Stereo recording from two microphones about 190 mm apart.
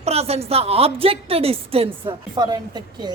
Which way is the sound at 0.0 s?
35° right (ahead or behind).